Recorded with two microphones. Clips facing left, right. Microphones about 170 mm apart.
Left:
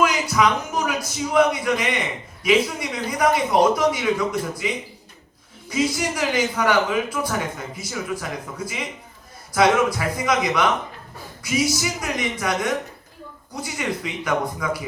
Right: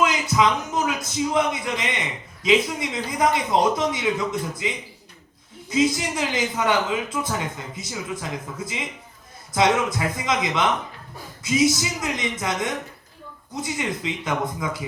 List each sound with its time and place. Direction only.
0.0 s speech: 20° right (ahead or behind)